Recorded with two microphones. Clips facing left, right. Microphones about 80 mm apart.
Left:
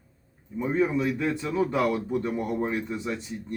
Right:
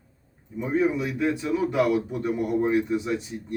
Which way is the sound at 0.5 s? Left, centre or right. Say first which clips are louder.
Right 1 dB; centre.